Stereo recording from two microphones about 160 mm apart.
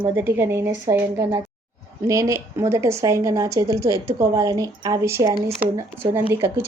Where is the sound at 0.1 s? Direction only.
15° right (ahead or behind).